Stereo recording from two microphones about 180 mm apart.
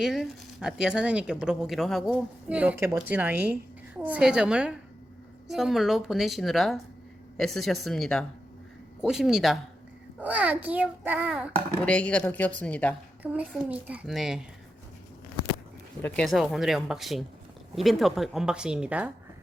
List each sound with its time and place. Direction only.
0.0 s a child's voice: centre (ahead or behind)
11.9 s a woman's voice: 5° left (ahead or behind)
13.2 s a child's voice: 10° right (ahead or behind)
16.0 s speech: 5° left (ahead or behind)